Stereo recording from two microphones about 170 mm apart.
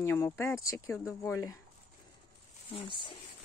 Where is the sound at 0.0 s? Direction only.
15° left (ahead or behind).